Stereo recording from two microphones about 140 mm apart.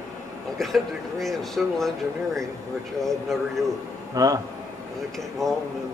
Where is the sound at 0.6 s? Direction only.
Centre (ahead or behind).